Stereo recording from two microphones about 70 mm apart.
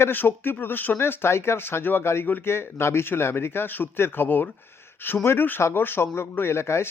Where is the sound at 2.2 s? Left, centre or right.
Left.